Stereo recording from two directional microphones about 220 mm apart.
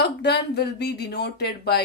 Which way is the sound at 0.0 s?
50° left (ahead or behind).